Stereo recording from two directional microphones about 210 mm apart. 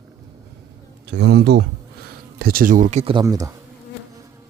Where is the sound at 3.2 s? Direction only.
15° right (ahead or behind).